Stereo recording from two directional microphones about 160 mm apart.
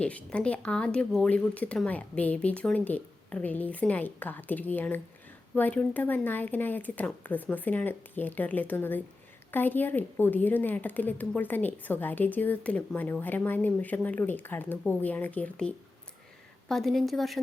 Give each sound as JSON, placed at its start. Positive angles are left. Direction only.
{"t": 0.0, "sound": "a woman's voice", "side_deg": 5}